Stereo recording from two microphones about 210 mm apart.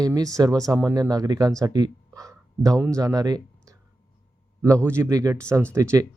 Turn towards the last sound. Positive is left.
turn(degrees=-15)  # may be behind; listen again after turning